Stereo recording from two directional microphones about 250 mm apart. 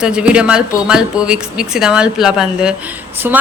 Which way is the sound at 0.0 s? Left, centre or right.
Centre.